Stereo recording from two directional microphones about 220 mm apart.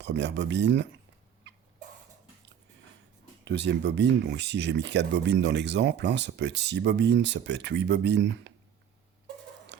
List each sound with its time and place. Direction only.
0.0 s speech: 55° right (ahead or behind)
3.4 s speech: 55° right (ahead or behind)